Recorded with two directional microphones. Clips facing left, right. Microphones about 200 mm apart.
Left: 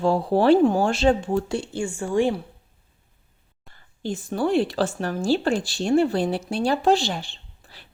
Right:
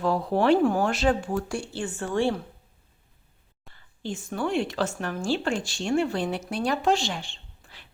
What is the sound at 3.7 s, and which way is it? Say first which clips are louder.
Speech: left 4 dB; 40° left (ahead or behind).